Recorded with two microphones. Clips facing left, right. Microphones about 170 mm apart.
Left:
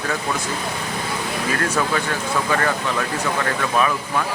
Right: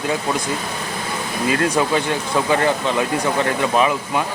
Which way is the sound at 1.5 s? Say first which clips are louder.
Right 4 dB; 20° right (ahead or behind).